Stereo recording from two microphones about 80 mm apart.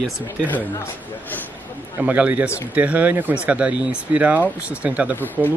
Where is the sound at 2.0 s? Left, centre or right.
Centre.